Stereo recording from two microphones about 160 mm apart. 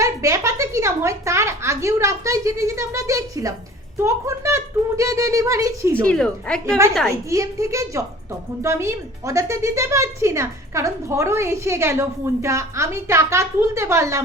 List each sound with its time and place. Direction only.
0.0 s a woman's voice: 20° right (ahead or behind)
5.9 s a woman's voice: 10° left (ahead or behind)
7.3 s a woman's voice: 20° right (ahead or behind)